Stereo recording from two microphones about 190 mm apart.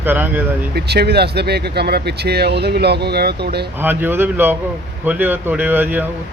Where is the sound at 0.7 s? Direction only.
60° right (ahead or behind).